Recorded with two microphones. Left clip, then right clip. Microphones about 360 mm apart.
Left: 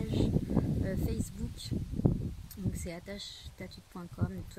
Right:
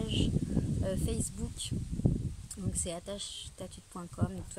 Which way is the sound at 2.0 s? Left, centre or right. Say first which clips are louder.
Left 2 dB; left.